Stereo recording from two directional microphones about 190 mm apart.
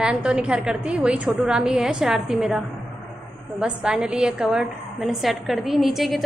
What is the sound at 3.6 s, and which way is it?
A woman's voice, 5° right (ahead or behind).